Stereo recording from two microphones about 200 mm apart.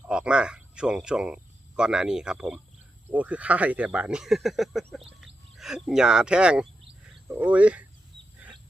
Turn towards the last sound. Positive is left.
turn(degrees=-5)  # may be behind; listen again after turning